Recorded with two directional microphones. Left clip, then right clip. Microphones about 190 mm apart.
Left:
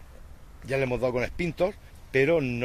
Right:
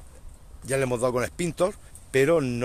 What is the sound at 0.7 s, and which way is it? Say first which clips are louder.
Speech: right 2 dB; 25° right (ahead or behind).